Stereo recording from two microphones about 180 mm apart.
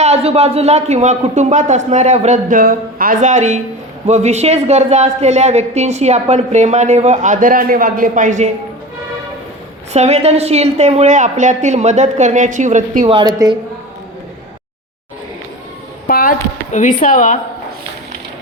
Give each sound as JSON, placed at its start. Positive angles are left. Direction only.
{"t": 0.0, "sound": "speech", "side_deg": -35}
{"t": 9.9, "sound": "speech", "side_deg": -35}
{"t": 13.1, "sound": "a woman's voice", "side_deg": -25}
{"t": 16.0, "sound": "a sound", "side_deg": 50}
{"t": 16.7, "sound": "speech", "side_deg": 45}